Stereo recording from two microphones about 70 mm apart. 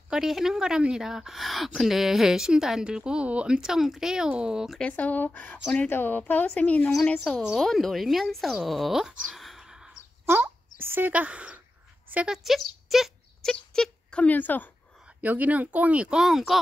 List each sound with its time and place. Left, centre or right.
0.1 s a woman's voice: centre
4.7 s speech: centre
10.2 s a sound: right
11.1 s speech: right
12.3 s a woman's voice: centre
12.8 s wail: centre
13.5 s a sound: centre
14.2 s speech: left
15.2 s speech: right; by 16.5 s centre